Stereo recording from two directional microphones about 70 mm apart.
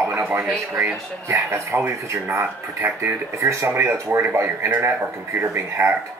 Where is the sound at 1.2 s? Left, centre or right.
Right.